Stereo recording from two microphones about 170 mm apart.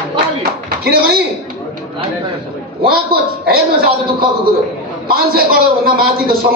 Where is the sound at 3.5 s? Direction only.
60° right (ahead or behind).